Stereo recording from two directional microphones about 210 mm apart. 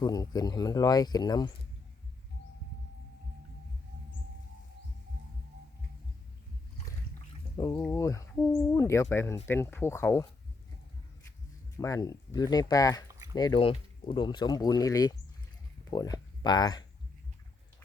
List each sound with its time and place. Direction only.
0.0 s speech: 20° left (ahead or behind)
7.5 s speech: 15° left (ahead or behind)
11.8 s speech: 15° left (ahead or behind)